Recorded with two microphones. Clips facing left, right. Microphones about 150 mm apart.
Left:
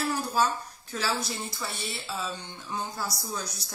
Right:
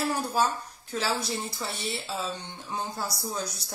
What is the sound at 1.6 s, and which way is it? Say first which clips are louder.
Speech: right 2 dB; 25° right (ahead or behind).